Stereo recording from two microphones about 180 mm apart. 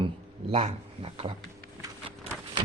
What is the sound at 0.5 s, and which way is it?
Speech, 40° right (ahead or behind).